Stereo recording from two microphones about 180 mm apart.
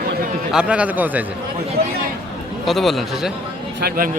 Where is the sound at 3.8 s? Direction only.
55° right (ahead or behind).